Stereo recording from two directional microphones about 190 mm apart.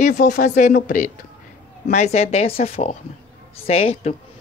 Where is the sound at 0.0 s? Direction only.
40° left (ahead or behind).